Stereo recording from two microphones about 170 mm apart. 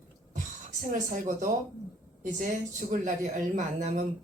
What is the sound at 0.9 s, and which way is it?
Speech, 50° right (ahead or behind).